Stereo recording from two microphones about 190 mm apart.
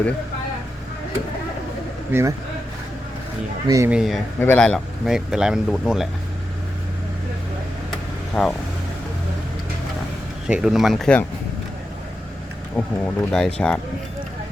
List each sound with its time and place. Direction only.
2.1 s speech: 10° right (ahead or behind)
3.7 s speech: 15° right (ahead or behind)
3.9 s speech: centre (ahead or behind)
4.4 s speech: 10° left (ahead or behind)
8.3 s speech: 5° left (ahead or behind)
10.4 s speech: 5° right (ahead or behind)
12.7 s speech: 5° left (ahead or behind)